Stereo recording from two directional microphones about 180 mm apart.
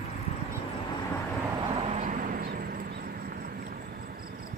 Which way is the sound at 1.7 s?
35° right (ahead or behind).